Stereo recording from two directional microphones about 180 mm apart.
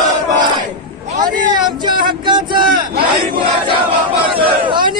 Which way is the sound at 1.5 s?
25° right (ahead or behind).